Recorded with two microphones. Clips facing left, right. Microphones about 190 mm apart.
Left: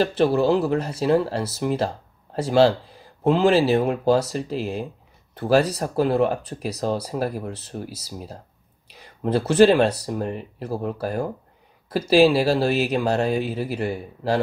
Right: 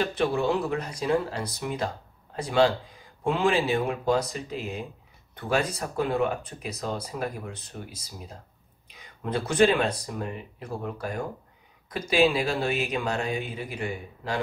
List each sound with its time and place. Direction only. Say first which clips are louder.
0.2 s speech: left 7 dB; 35° left (ahead or behind)
8.9 s speech: left 7 dB; 35° left (ahead or behind)